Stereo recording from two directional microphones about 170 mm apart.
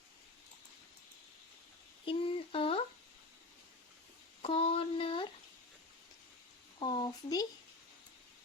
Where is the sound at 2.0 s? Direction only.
35° left (ahead or behind).